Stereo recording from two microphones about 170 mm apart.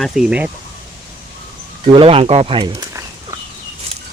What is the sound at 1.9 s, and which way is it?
Speech, 30° right (ahead or behind).